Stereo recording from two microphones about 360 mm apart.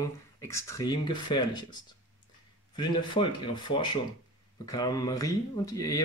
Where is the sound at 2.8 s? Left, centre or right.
Centre.